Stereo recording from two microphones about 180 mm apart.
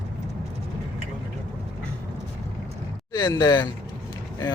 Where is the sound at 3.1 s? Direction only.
25° left (ahead or behind).